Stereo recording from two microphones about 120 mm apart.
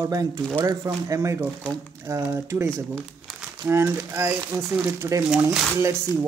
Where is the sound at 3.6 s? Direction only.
25° right (ahead or behind).